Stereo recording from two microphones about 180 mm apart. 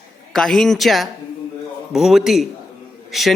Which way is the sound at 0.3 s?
Centre (ahead or behind).